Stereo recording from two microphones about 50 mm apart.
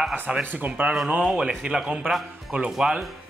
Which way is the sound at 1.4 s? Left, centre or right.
Centre.